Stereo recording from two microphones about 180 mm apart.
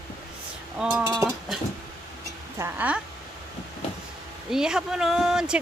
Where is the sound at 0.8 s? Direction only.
5° right (ahead or behind).